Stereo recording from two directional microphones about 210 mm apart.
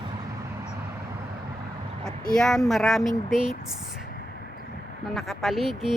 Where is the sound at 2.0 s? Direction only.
5° left (ahead or behind).